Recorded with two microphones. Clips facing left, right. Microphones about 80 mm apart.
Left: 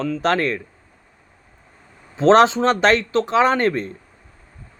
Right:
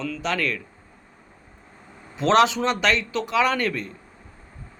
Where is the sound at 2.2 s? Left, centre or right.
Left.